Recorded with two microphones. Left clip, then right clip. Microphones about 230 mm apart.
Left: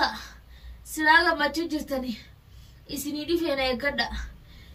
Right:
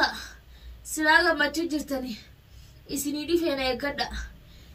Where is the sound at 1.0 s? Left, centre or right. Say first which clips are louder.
Left 1 dB; left.